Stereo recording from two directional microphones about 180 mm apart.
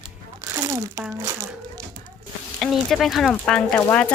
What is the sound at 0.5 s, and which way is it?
Crumpling, 15° right (ahead or behind).